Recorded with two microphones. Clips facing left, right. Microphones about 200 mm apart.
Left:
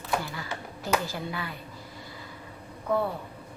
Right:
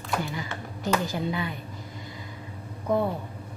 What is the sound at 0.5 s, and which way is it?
Speech, 10° left (ahead or behind).